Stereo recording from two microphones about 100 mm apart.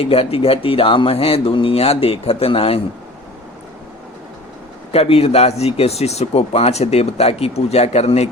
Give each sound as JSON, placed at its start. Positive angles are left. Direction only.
{"t": 0.0, "sound": "speech", "side_deg": 75}
{"t": 4.9, "sound": "speech", "side_deg": 85}